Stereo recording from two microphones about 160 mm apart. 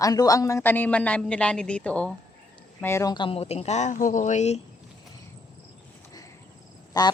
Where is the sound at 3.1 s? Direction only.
35° left (ahead or behind).